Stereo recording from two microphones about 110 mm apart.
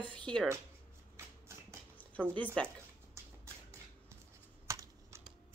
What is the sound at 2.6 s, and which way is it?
Speech, 10° left (ahead or behind).